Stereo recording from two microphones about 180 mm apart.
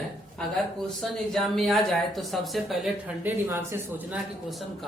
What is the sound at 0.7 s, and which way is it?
Speech, 5° left (ahead or behind).